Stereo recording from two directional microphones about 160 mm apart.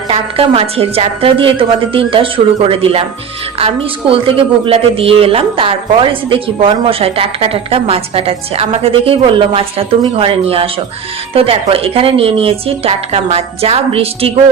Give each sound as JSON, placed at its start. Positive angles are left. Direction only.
{"t": 0.1, "sound": "speech", "side_deg": -35}